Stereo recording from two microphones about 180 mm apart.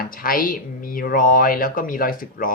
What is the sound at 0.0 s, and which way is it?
Speech, 50° left (ahead or behind).